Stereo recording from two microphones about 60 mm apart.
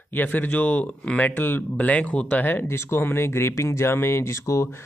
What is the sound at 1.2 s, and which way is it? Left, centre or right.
Speech, left.